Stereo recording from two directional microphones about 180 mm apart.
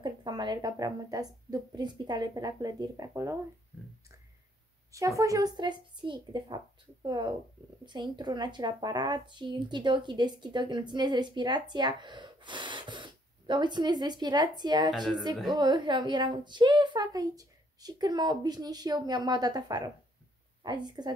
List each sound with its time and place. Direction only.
0.0 s speech: 25° right (ahead or behind)
4.9 s speech: 15° right (ahead or behind)
14.9 s a woman's voice: centre (ahead or behind)
15.5 s speech: 25° right (ahead or behind)